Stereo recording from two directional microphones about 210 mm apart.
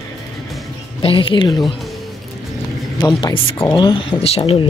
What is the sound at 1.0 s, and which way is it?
Speech, 25° left (ahead or behind).